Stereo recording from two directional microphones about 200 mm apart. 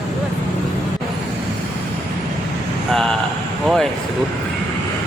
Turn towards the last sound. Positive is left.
turn(degrees=0)  # may be behind; listen again after turning